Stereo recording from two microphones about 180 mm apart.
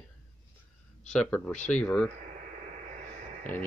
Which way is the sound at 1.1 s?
5° left (ahead or behind).